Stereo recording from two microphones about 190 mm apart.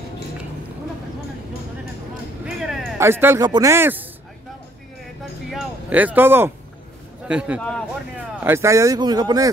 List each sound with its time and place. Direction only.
3.0 s speech: 10° right (ahead or behind)
5.5 s a sound: 5° right (ahead or behind)
7.2 s speech: 5° right (ahead or behind)